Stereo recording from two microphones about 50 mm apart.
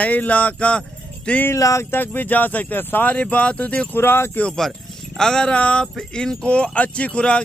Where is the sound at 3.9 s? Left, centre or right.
Left.